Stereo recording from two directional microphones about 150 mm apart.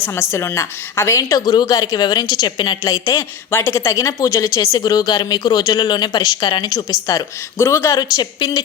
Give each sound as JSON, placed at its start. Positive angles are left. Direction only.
{"t": 0.0, "sound": "a woman's voice", "side_deg": 15}